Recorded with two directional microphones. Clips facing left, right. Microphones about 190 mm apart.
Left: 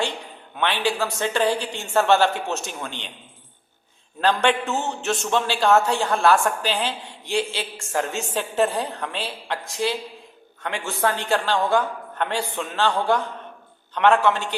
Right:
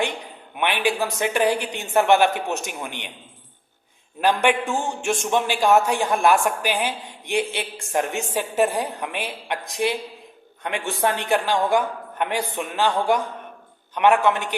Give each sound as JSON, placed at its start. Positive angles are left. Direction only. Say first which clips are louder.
{"t": 0.5, "sound": "a woman's voice", "louder": "right 1 dB", "side_deg": -15}
{"t": 4.2, "sound": "a woman's voice", "louder": "right 1 dB", "side_deg": -15}